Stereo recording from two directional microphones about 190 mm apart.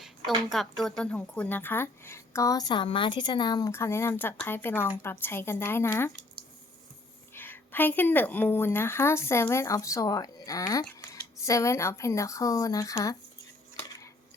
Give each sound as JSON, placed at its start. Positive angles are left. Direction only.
{"t": 0.0, "sound": "speech", "side_deg": 0}
{"t": 7.3, "sound": "speech", "side_deg": 10}